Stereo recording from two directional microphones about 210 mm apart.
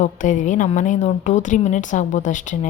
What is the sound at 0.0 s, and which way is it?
A woman's voice, 40° left (ahead or behind).